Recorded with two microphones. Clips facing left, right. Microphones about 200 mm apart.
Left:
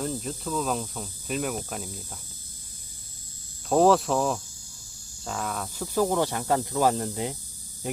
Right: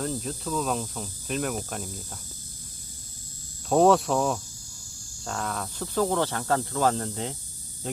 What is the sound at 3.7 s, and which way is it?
Speech, centre (ahead or behind).